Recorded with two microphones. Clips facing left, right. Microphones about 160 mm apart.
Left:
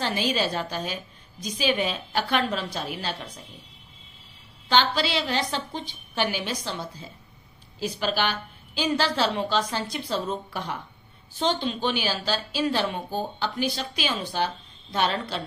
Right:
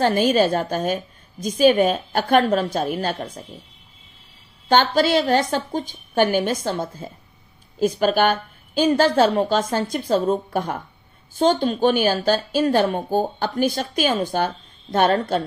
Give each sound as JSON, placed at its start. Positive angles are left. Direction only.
{"t": 0.0, "sound": "a woman's voice", "side_deg": -50}
{"t": 4.6, "sound": "a woman's voice", "side_deg": -50}